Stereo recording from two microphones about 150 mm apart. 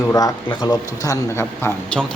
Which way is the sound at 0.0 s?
25° left (ahead or behind).